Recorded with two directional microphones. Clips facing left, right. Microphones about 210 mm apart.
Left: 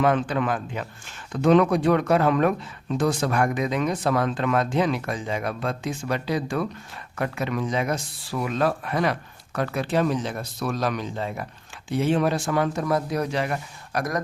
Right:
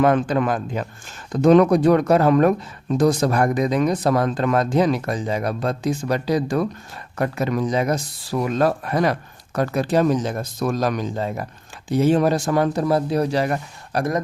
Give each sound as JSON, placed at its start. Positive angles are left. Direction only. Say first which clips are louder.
{"t": 0.0, "sound": "a man's voice", "louder": "right 4 dB", "side_deg": -45}